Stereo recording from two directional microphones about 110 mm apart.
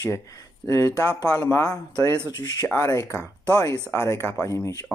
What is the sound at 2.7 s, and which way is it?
Speech, 30° left (ahead or behind).